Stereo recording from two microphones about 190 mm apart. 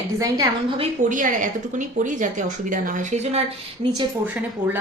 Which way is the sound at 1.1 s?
45° right (ahead or behind).